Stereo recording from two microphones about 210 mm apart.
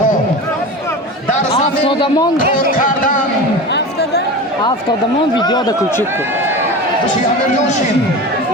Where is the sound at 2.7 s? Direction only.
40° left (ahead or behind).